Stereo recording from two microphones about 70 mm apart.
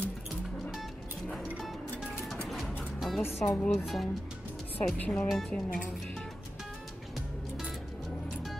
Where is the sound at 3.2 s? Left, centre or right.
Left.